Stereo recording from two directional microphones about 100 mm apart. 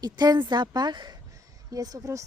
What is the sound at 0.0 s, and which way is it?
A woman's voice, 40° right (ahead or behind).